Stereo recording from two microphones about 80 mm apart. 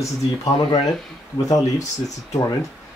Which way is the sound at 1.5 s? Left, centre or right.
Left.